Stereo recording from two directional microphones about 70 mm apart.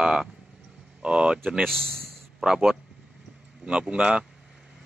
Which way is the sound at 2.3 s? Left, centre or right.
Centre.